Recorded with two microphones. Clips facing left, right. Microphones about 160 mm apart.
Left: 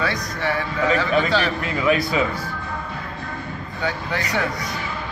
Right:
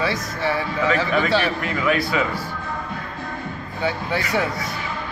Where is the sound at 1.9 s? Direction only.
20° left (ahead or behind).